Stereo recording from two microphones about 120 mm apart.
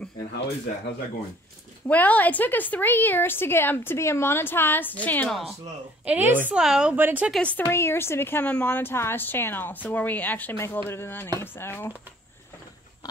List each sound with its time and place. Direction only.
1.9 s a woman's voice: 15° left (ahead or behind)
5.3 s speech: centre (ahead or behind)
6.0 s a woman's voice: 15° right (ahead or behind)
7.0 s a woman's voice: 15° right (ahead or behind)
7.4 s a woman's voice: 15° left (ahead or behind)